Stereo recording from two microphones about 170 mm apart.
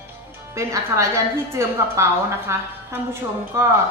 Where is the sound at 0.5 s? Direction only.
15° right (ahead or behind).